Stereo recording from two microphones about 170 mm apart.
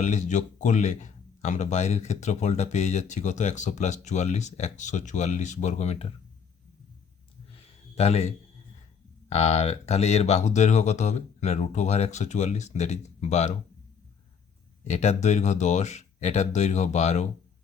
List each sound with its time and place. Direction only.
0.0 s speech: 45° left (ahead or behind)
7.5 s a sound: 35° left (ahead or behind)
9.3 s speech: 40° left (ahead or behind)
14.8 s speech: 40° left (ahead or behind)